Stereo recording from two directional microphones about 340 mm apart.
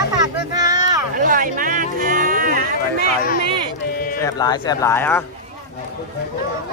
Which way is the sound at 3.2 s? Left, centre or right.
Left.